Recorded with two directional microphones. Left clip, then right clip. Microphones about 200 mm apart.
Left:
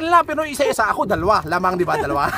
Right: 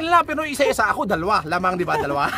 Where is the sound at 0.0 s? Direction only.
15° right (ahead or behind).